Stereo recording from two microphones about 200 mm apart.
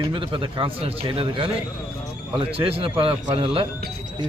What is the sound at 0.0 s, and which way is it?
A man's voice, 25° right (ahead or behind).